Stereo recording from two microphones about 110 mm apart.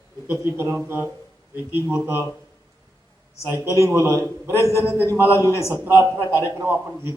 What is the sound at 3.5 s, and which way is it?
Speech, 25° right (ahead or behind).